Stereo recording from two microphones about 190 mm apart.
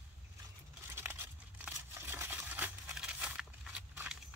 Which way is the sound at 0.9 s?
10° right (ahead or behind).